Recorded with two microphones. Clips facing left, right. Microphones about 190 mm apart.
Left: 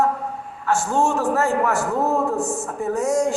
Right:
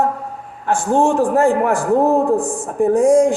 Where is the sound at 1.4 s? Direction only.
50° right (ahead or behind).